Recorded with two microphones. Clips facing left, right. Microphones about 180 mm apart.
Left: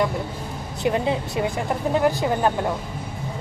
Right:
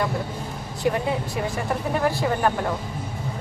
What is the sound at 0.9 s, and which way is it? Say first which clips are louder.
A woman's voice: left 1 dB; 20° left (ahead or behind).